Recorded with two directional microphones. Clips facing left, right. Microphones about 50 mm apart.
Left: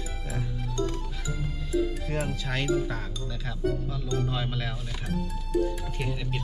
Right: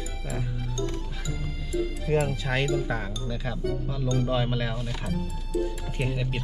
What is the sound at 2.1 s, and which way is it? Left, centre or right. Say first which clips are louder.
Speech: right 5 dB; centre.